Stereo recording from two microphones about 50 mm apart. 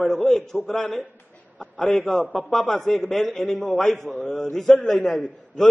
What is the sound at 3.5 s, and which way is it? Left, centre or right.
A man's voice, centre.